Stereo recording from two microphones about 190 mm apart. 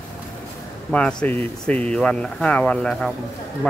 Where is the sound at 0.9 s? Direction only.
5° left (ahead or behind).